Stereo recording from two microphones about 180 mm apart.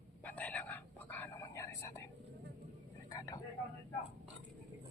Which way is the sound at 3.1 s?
20° left (ahead or behind).